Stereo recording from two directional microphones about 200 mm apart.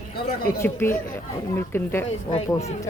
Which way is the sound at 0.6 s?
10° left (ahead or behind).